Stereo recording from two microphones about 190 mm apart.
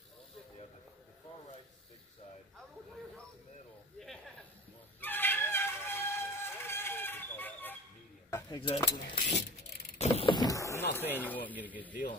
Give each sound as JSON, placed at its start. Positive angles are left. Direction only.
{"t": 5.0, "sound": "a sound", "side_deg": 10}
{"t": 8.5, "sound": "speech", "side_deg": 25}
{"t": 9.9, "sound": "vehicle", "side_deg": 35}
{"t": 11.0, "sound": "speech", "side_deg": 10}